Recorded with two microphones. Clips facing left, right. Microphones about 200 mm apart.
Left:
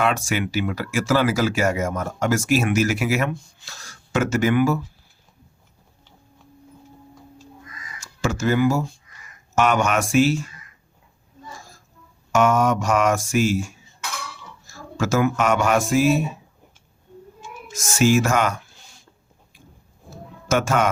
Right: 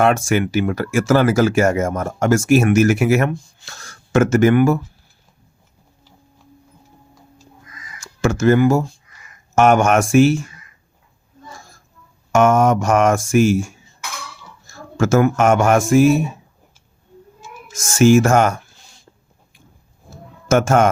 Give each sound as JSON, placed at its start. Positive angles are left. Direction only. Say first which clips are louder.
{"t": 0.0, "sound": "speech", "louder": "right 6 dB", "side_deg": -50}
{"t": 8.2, "sound": "speech", "louder": "right 6 dB", "side_deg": -50}
{"t": 12.3, "sound": "speech", "louder": "right 4 dB", "side_deg": -50}
{"t": 17.7, "sound": "speech", "louder": "right 6 dB", "side_deg": -45}
{"t": 20.1, "sound": "a sound", "louder": "right 5 dB", "side_deg": -45}